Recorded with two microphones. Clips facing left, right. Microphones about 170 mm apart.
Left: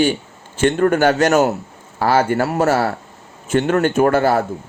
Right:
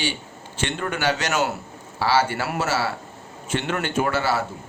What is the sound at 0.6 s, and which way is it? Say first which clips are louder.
Speech: left 11 dB; 50° left (ahead or behind).